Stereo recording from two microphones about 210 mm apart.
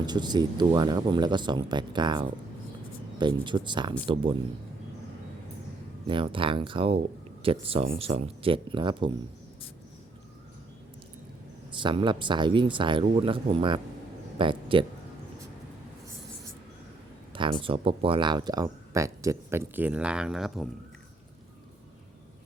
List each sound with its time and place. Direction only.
0.0 s speech: 20° right (ahead or behind)
6.1 s speech: 25° right (ahead or behind)
11.7 s speech: 20° right (ahead or behind)
17.3 s speech: 25° right (ahead or behind); by 20.7 s centre (ahead or behind)